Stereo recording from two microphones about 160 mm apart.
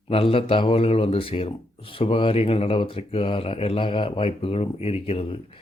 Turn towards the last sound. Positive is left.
turn(degrees=35)  # may be behind; listen again after turning